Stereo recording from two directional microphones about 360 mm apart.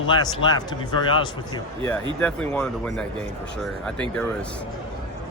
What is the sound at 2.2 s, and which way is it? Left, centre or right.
Speech, centre.